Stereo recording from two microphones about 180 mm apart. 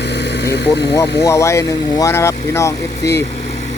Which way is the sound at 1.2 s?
15° left (ahead or behind).